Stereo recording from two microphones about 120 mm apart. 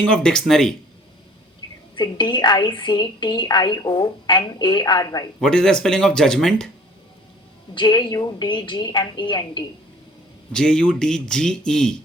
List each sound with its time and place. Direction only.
0.0 s speech: 5° left (ahead or behind)
2.0 s a woman's voice: 40° left (ahead or behind)
5.4 s speech: 5° left (ahead or behind)
7.8 s a woman's voice: 40° left (ahead or behind)
10.5 s speech: 5° left (ahead or behind)